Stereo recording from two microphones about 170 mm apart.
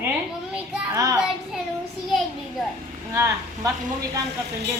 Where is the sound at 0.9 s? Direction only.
20° right (ahead or behind).